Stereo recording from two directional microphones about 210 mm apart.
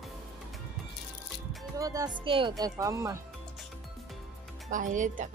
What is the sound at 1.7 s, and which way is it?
Speech, 15° right (ahead or behind).